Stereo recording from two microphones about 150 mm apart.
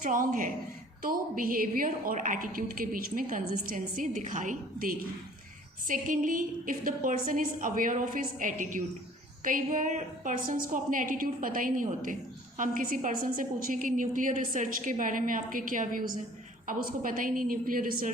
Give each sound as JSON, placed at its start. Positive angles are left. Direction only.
{"t": 0.0, "sound": "a woman's voice", "side_deg": -60}